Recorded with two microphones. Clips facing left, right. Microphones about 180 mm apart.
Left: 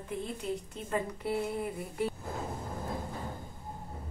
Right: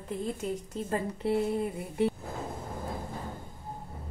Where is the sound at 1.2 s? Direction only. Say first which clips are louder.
Right 5 dB; 25° right (ahead or behind).